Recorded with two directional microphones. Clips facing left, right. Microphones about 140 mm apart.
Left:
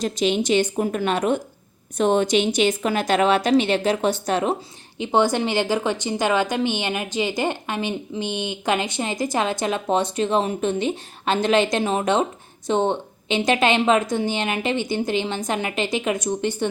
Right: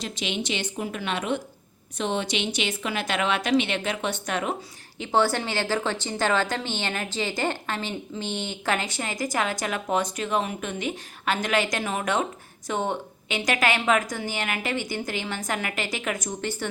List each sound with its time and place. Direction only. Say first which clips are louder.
0.0 s a woman's voice: left 9 dB; 45° left (ahead or behind)
4.9 s speech: left 4 dB; 20° left (ahead or behind)